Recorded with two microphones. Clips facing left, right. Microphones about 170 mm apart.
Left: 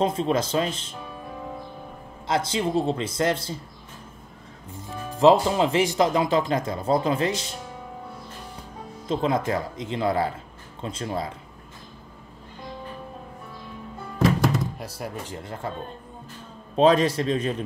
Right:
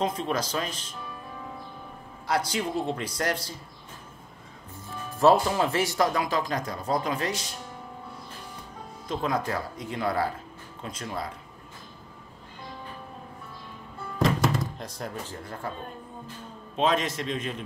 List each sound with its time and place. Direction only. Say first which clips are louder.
0.0 s speech: left 5 dB; 30° left (ahead or behind)
2.2 s speech: left 3 dB; 25° left (ahead or behind)
5.2 s speech: left 3 dB; 20° left (ahead or behind)
9.1 s speech: left 5 dB; 25° left (ahead or behind)
14.5 s a sound: left 3 dB; 5° left (ahead or behind)
15.3 s speech: left 3 dB; 20° left (ahead or behind)
16.7 s a man's voice: left 7 dB; 35° left (ahead or behind)